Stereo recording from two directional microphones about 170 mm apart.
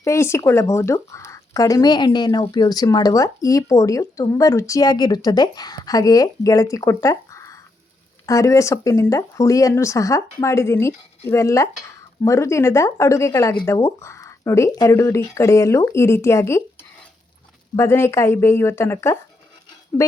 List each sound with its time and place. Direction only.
0.0 s speech: 15° left (ahead or behind)
17.7 s speech: 15° left (ahead or behind)